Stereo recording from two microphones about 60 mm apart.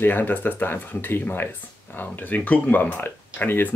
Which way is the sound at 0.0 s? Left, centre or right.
Left.